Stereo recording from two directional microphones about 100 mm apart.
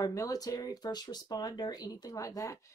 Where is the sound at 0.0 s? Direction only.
35° left (ahead or behind).